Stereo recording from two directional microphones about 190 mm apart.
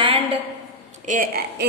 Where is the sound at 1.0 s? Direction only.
50° right (ahead or behind).